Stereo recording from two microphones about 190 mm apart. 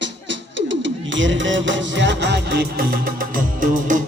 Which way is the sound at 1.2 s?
75° right (ahead or behind).